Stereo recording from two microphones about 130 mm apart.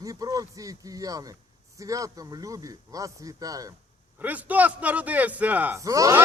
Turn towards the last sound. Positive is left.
turn(degrees=-25)  # may be behind; listen again after turning